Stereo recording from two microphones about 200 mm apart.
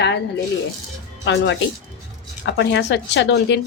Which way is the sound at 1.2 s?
65° left (ahead or behind).